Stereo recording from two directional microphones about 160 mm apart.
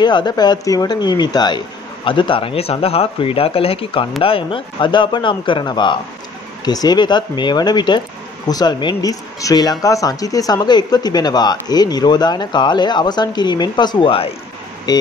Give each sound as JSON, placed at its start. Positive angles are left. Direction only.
{"t": 0.0, "sound": "speech", "side_deg": 25}
{"t": 14.9, "sound": "speech", "side_deg": 25}